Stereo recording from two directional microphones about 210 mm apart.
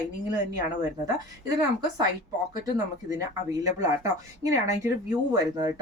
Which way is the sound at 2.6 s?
15° right (ahead or behind).